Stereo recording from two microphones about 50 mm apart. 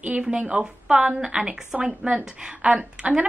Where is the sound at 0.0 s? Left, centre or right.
Right.